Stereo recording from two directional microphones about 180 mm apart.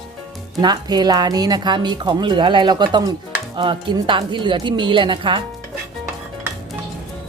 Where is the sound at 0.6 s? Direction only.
25° right (ahead or behind).